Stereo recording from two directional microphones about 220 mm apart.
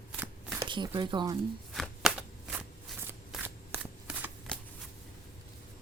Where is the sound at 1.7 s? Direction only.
Centre (ahead or behind).